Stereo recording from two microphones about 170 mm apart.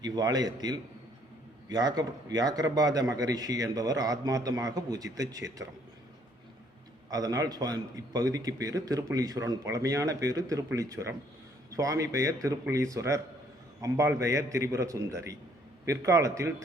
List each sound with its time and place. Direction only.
0.0 s a man's voice: 25° right (ahead or behind)
7.1 s a man's voice: 20° right (ahead or behind)